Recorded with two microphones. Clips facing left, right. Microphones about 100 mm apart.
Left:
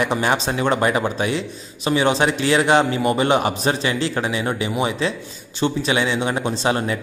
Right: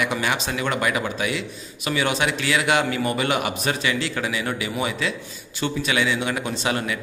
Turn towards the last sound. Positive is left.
turn(degrees=30)  # may be behind; listen again after turning